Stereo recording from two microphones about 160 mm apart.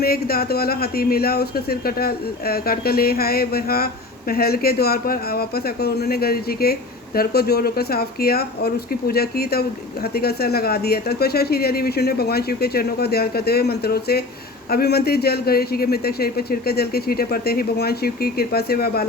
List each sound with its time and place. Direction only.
0.0 s speech: 70° left (ahead or behind)